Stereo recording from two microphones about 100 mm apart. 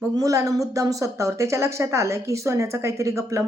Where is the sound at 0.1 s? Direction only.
35° right (ahead or behind).